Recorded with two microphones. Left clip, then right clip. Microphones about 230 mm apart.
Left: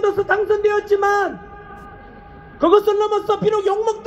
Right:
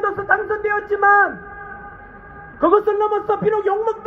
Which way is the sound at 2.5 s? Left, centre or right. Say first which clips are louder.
Left 1 dB; left.